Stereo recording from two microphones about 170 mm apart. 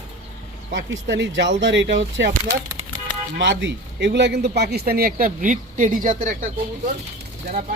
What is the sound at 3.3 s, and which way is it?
A man's voice, 90° right.